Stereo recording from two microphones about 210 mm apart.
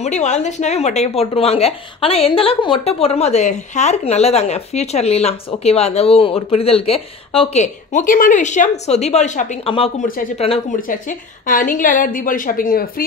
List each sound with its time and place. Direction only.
0.0 s speech: 35° left (ahead or behind)
10.9 s speech: 40° left (ahead or behind)